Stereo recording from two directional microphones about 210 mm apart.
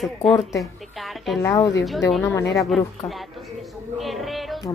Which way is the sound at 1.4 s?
15° left (ahead or behind).